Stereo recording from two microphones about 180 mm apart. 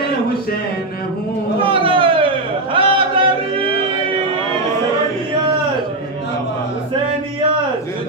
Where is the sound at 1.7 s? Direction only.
30° right (ahead or behind).